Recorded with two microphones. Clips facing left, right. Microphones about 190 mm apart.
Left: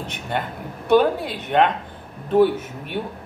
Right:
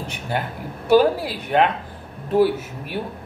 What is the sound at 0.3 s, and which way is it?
A woman's voice, 5° right (ahead or behind).